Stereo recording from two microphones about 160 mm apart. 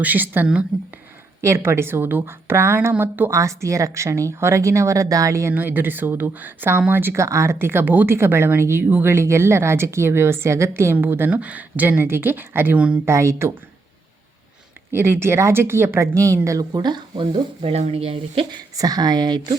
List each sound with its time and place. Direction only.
0.0 s a woman's voice: 10° right (ahead or behind)
13.1 s a woman's voice: 20° right (ahead or behind)
14.9 s speech: 15° right (ahead or behind); by 18.6 s 35° right (ahead or behind)
18.8 s speech: 25° right (ahead or behind)